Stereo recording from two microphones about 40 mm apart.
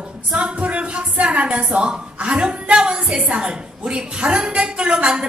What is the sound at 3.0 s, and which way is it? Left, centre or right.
A woman's voice, centre.